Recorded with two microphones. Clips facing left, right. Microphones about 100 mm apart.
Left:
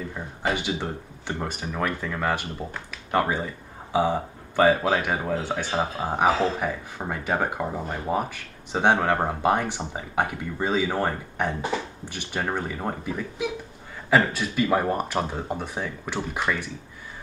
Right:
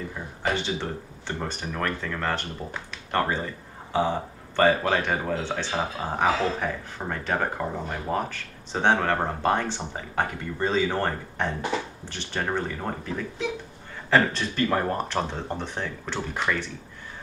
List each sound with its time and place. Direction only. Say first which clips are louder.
0.1 s speech: left 1 dB; 15° left (ahead or behind)